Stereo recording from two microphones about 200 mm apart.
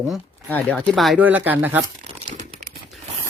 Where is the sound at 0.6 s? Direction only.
5° left (ahead or behind).